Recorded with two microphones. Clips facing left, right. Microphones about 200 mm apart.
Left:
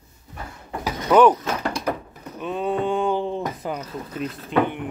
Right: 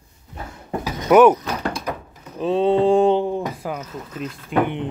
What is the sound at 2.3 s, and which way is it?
Mantra, 30° right (ahead or behind).